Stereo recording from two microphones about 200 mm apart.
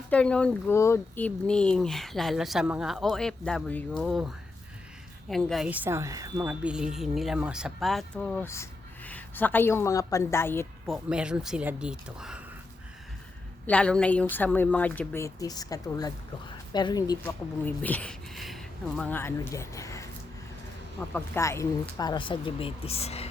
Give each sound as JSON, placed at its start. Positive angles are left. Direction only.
{"t": 0.1, "sound": "speech", "side_deg": 5}
{"t": 10.8, "sound": "speech", "side_deg": -5}
{"t": 13.7, "sound": "speech", "side_deg": 5}
{"t": 17.7, "sound": "speech", "side_deg": 10}
{"t": 21.1, "sound": "speech", "side_deg": 10}